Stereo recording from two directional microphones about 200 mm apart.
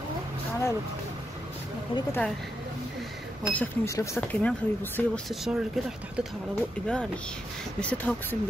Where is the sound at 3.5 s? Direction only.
10° left (ahead or behind).